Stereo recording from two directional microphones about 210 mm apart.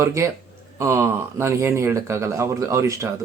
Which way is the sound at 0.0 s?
15° right (ahead or behind).